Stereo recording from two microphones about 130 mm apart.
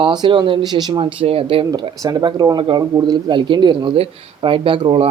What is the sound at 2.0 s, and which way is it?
Speech, 30° right (ahead or behind).